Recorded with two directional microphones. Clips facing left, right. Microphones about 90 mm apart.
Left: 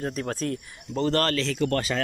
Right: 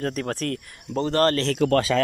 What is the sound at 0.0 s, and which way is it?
Speech, 60° right (ahead or behind).